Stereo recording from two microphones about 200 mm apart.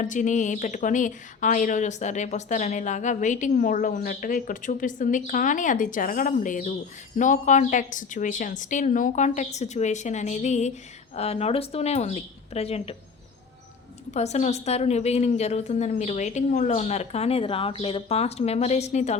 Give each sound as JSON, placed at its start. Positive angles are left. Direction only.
{"t": 0.0, "sound": "a woman's voice", "side_deg": 40}
{"t": 14.1, "sound": "a woman's voice", "side_deg": 35}